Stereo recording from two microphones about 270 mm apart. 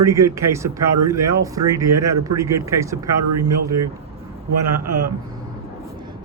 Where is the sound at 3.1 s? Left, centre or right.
Right.